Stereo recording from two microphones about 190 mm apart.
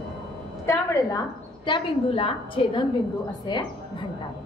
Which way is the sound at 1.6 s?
25° left (ahead or behind).